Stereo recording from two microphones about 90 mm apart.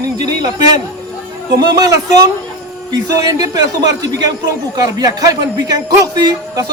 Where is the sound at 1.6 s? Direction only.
45° right (ahead or behind).